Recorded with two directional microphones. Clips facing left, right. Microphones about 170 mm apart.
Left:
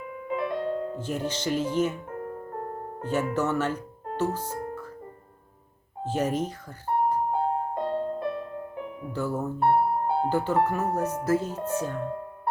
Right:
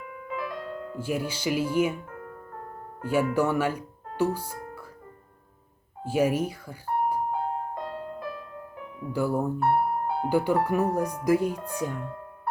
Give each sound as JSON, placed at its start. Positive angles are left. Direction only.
{"t": 0.0, "sound": "music", "side_deg": 30}
{"t": 0.9, "sound": "speech", "side_deg": -10}
{"t": 2.0, "sound": "music", "side_deg": 30}
{"t": 3.0, "sound": "speech", "side_deg": -10}
{"t": 6.1, "sound": "speech", "side_deg": -10}
{"t": 7.3, "sound": "music", "side_deg": 25}
{"t": 9.1, "sound": "speech", "side_deg": -10}
{"t": 9.6, "sound": "music", "side_deg": 25}
{"t": 10.2, "sound": "speech", "side_deg": -10}